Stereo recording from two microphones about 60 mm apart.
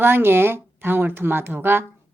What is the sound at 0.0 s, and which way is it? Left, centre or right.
A woman's voice, right.